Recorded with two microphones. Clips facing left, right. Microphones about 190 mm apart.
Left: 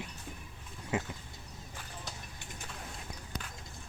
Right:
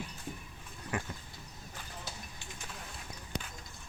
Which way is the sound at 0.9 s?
25° left (ahead or behind).